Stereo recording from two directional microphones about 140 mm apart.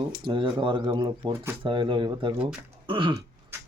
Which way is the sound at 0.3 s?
35° right (ahead or behind).